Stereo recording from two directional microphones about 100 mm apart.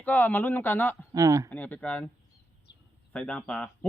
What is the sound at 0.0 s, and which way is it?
Speech, 15° left (ahead or behind).